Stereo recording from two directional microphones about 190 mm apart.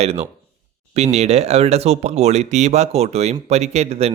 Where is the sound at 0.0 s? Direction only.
35° right (ahead or behind).